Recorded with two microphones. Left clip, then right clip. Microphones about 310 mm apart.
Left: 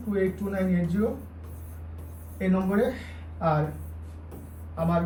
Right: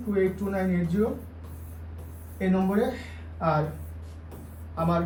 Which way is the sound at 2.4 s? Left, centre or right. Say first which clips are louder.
Even; centre.